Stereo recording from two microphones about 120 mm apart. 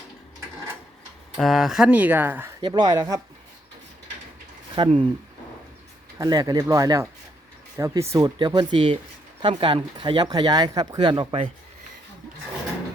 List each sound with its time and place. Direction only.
1.4 s speech: centre (ahead or behind); by 2.5 s 15° right (ahead or behind)
2.6 s speech: 40° right (ahead or behind)
4.8 s speech: 45° right (ahead or behind)
6.1 s speech: 30° right (ahead or behind)
8.4 s speech: 40° right (ahead or behind)